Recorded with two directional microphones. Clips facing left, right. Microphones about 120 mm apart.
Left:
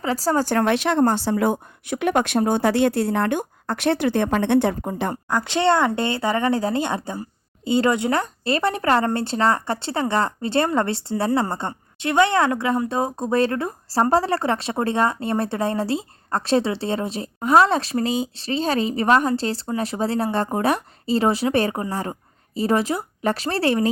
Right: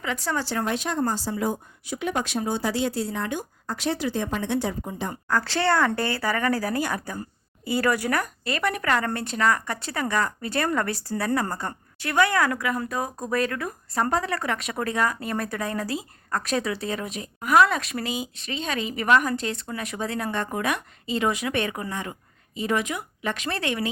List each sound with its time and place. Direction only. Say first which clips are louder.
0.0 s speech: left 7 dB; 35° left (ahead or behind)
0.5 s speech: left 7 dB; 75° left (ahead or behind)
5.3 s speech: left 3 dB; 20° left (ahead or behind); by 23.9 s 35° left (ahead or behind)